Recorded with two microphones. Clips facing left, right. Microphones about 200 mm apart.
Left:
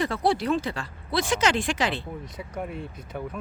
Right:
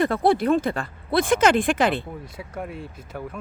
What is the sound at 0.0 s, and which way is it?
Speech, 55° right (ahead or behind).